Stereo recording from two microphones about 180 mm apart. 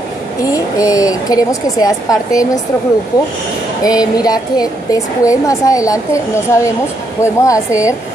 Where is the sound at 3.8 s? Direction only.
20° left (ahead or behind).